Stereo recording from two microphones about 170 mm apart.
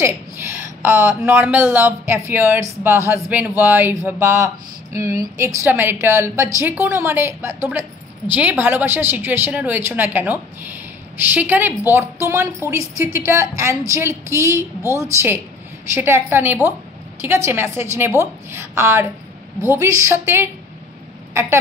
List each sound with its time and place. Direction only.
0.8 s speech: 15° right (ahead or behind)
11.3 s speech: 10° right (ahead or behind)